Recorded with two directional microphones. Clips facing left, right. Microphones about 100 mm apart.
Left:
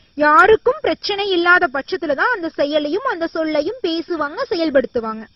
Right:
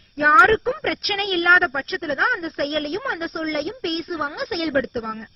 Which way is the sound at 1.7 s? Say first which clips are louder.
Left 5 dB; 40° left (ahead or behind).